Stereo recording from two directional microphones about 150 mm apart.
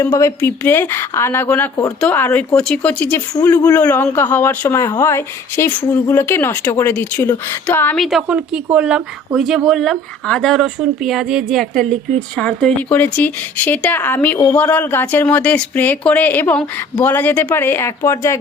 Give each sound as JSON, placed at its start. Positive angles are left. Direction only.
{"t": 0.0, "sound": "speech", "side_deg": 20}
{"t": 7.9, "sound": "speech", "side_deg": 0}